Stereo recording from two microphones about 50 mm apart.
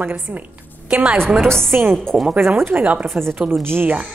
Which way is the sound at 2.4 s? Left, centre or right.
Right.